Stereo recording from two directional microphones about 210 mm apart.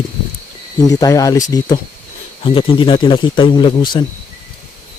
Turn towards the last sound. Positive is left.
turn(degrees=20)  # may be behind; listen again after turning